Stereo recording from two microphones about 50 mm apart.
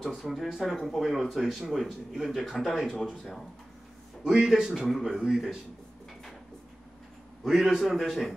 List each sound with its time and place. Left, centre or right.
0.0 s speech: centre
4.2 s a man's voice: centre
4.7 s speech: centre
5.0 s speech: centre
7.4 s speech: centre